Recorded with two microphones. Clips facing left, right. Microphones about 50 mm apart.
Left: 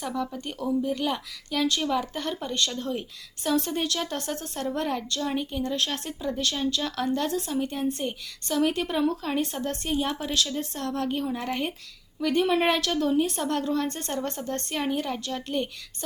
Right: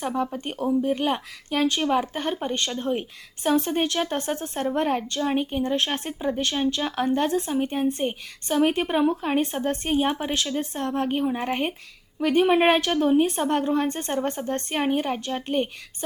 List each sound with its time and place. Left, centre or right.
0.0 s speech: right